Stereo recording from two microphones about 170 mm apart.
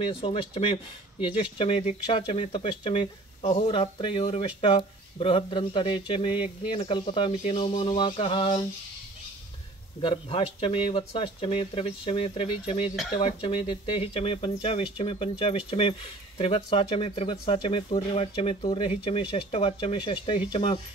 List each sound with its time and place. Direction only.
0.2 s speech: 35° left (ahead or behind)
10.0 s speech: 35° left (ahead or behind)